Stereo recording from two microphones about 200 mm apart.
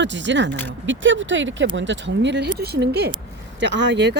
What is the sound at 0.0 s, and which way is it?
Speech, 65° right (ahead or behind).